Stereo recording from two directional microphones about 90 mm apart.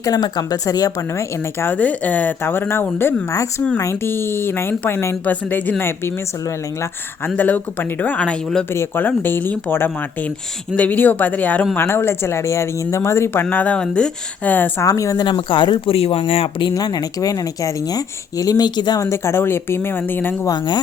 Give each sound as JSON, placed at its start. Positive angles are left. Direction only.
{"t": 0.0, "sound": "speech", "side_deg": 45}
{"t": 7.3, "sound": "speech", "side_deg": 15}
{"t": 8.7, "sound": "speech", "side_deg": 30}
{"t": 14.8, "sound": "a woman's voice", "side_deg": 40}
{"t": 15.4, "sound": "speech", "side_deg": 70}
{"t": 16.7, "sound": "speech", "side_deg": 45}
{"t": 18.9, "sound": "speech", "side_deg": 30}